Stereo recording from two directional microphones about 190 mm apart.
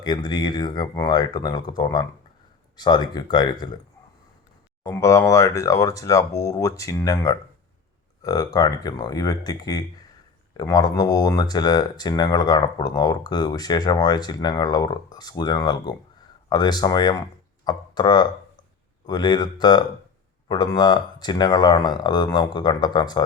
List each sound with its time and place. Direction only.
0.0 s speech: 20° left (ahead or behind)
4.8 s speech: 15° left (ahead or behind)